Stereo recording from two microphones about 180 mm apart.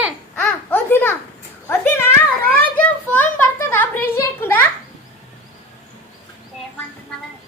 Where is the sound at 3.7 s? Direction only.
10° left (ahead or behind).